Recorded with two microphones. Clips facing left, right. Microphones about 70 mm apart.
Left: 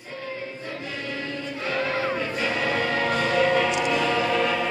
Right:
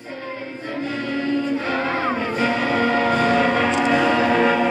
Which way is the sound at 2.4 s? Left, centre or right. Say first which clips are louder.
Right 6 dB; right.